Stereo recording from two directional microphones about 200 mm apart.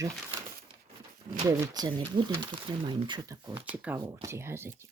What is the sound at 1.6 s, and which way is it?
Speech, 20° right (ahead or behind).